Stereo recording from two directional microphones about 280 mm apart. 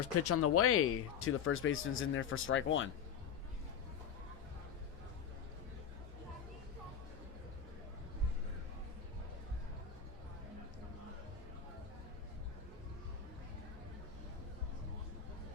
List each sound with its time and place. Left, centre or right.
0.0 s speech: left